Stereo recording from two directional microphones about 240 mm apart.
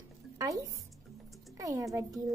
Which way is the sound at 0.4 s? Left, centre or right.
Centre.